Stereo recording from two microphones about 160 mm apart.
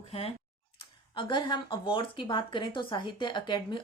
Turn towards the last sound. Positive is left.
turn(degrees=30)  # may be behind; listen again after turning